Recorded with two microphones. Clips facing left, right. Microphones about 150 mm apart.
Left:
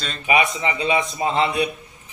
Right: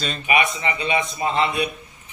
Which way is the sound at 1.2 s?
25° left (ahead or behind).